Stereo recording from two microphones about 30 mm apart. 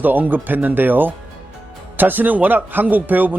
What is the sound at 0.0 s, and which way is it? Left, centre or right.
Speech, right.